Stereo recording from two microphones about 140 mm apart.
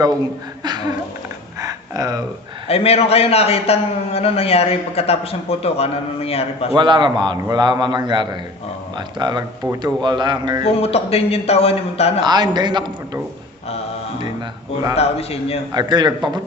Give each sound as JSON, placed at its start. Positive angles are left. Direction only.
{"t": 0.6, "sound": "a sound", "side_deg": -30}
{"t": 2.6, "sound": "a man's voice", "side_deg": 45}
{"t": 6.7, "sound": "a man's voice", "side_deg": -35}
{"t": 10.6, "sound": "a man's voice", "side_deg": 45}
{"t": 12.2, "sound": "a man's voice", "side_deg": -30}
{"t": 14.9, "sound": "a man's voice", "side_deg": 45}
{"t": 15.7, "sound": "a man's voice", "side_deg": -30}